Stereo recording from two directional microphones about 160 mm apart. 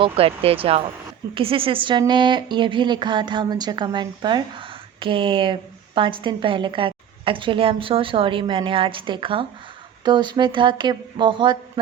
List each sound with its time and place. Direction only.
0.0 s a woman's voice: 35° right (ahead or behind)